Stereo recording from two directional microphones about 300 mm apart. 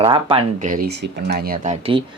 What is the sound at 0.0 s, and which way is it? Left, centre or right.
Speech, centre.